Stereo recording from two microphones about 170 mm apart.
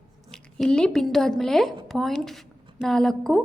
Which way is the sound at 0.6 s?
5° left (ahead or behind).